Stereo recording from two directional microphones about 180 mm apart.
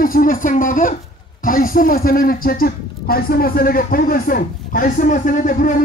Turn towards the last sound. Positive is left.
turn(degrees=45)  # may be behind; listen again after turning